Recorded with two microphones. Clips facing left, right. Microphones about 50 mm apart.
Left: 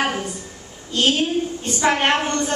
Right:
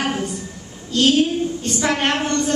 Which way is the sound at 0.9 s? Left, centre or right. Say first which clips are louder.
Right 3 dB; left.